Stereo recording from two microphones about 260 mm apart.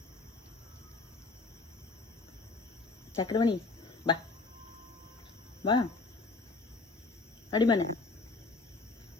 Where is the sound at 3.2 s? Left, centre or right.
Centre.